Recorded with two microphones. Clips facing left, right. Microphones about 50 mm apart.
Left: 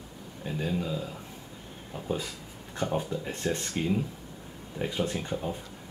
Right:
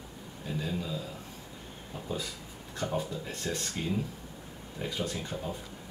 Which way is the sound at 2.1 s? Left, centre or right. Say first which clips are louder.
Left 4 dB; left.